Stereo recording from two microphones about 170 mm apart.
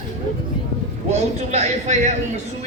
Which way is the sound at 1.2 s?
40° right (ahead or behind).